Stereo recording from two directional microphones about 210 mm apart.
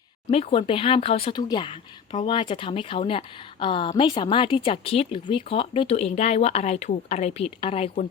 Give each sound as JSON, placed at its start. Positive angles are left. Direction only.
{"t": 0.3, "sound": "speech", "side_deg": 25}